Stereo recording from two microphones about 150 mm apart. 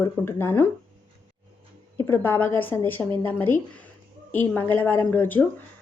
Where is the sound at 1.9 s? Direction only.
15° left (ahead or behind).